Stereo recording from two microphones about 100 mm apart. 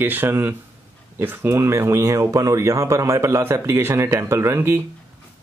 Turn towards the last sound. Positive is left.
turn(degrees=-25)  # may be behind; listen again after turning